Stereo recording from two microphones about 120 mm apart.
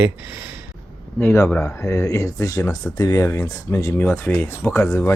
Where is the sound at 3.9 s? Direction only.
15° left (ahead or behind).